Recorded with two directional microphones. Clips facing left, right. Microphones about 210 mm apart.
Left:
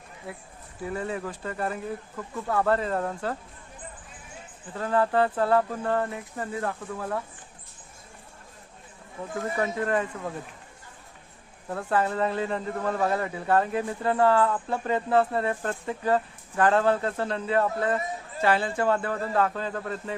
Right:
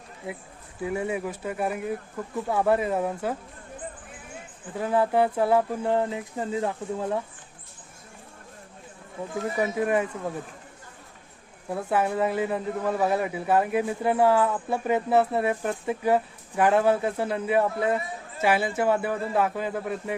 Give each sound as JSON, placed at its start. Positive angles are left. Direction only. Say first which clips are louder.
{"t": 0.3, "sound": "a man's voice", "louder": "right 4 dB", "side_deg": -15}
{"t": 4.7, "sound": "a man's voice", "louder": "right 1 dB", "side_deg": -15}
{"t": 9.6, "sound": "a man's voice", "louder": "right 2 dB", "side_deg": -10}
{"t": 11.7, "sound": "a man's voice", "louder": "right 1 dB", "side_deg": -10}